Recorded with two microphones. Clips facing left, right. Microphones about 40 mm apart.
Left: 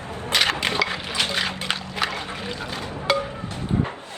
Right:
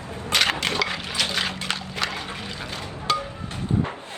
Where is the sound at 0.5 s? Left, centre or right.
Left.